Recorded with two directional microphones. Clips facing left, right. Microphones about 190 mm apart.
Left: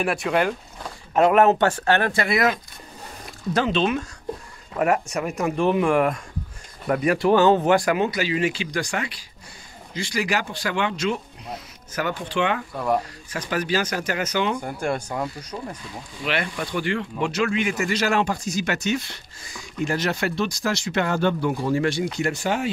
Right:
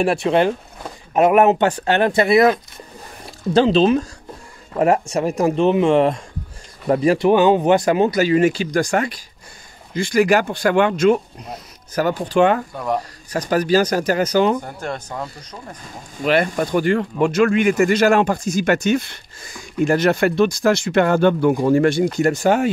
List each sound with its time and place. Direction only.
0.0 s speech: 30° right (ahead or behind)
3.5 s speech: 30° right (ahead or behind); by 11.1 s 50° right (ahead or behind)
11.9 s speech: 40° right (ahead or behind)
12.7 s speech: centre (ahead or behind)
13.3 s speech: 40° right (ahead or behind)
14.6 s speech: 10° left (ahead or behind)
16.2 s speech: 45° right (ahead or behind)